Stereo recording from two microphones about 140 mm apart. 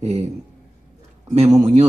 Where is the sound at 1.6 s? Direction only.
50° right (ahead or behind).